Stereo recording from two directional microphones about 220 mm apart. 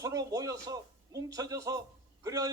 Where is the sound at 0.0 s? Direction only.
15° right (ahead or behind).